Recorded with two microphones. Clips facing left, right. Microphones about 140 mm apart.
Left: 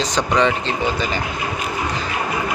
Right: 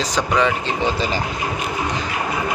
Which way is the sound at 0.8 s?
30° right (ahead or behind).